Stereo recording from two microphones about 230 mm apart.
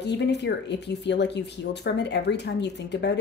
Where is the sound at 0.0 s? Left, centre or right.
Left.